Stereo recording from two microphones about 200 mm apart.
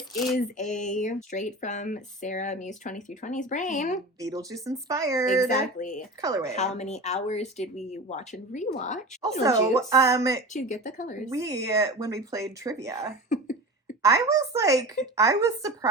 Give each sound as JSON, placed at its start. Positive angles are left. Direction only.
{"t": 0.3, "sound": "speech", "side_deg": 40}
{"t": 4.2, "sound": "speech", "side_deg": -15}
{"t": 5.5, "sound": "speech", "side_deg": 40}
{"t": 6.2, "sound": "speech", "side_deg": -15}
{"t": 6.5, "sound": "speech", "side_deg": 35}
{"t": 9.4, "sound": "speech", "side_deg": -15}
{"t": 10.5, "sound": "speech", "side_deg": 40}
{"t": 11.3, "sound": "speech", "side_deg": -15}
{"t": 13.3, "sound": "cough", "side_deg": 40}
{"t": 14.0, "sound": "speech", "side_deg": -15}